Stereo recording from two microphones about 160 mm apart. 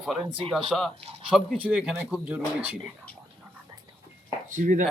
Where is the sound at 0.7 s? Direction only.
Centre (ahead or behind).